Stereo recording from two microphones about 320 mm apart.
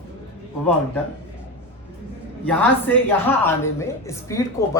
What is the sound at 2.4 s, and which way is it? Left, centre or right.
A man's voice, centre.